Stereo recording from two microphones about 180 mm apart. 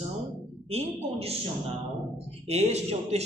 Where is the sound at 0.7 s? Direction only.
35° right (ahead or behind).